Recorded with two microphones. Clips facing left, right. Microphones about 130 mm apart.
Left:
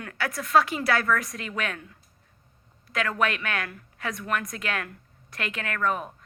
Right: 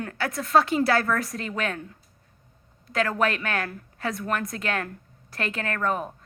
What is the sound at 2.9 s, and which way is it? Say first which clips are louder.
A woman's voice: right 2 dB; 30° right (ahead or behind).